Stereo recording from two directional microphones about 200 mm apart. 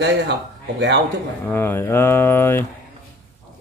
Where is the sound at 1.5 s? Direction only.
10° left (ahead or behind).